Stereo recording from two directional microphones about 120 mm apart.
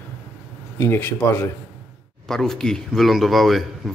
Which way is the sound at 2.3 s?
5° left (ahead or behind).